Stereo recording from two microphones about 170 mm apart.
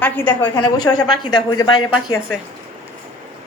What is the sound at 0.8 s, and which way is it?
A woman's voice, 25° left (ahead or behind).